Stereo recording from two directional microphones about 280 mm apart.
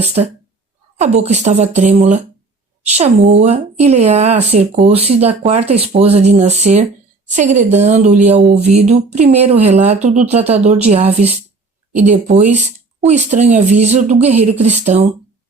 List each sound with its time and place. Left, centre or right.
0.0 s speech: right